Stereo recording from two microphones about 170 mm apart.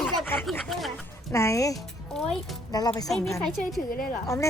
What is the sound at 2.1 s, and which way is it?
Speech, 5° left (ahead or behind).